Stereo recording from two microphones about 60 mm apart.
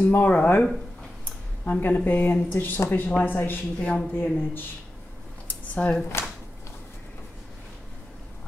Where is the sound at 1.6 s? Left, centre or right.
Left.